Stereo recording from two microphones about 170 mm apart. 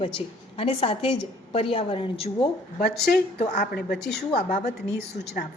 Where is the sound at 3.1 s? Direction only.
60° left (ahead or behind).